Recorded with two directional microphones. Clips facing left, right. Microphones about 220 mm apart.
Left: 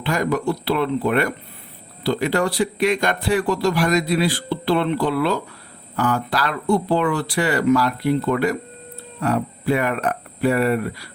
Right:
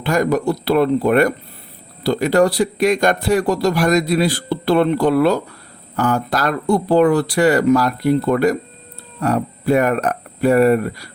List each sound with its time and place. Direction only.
0.0 s a man's voice: 45° right (ahead or behind)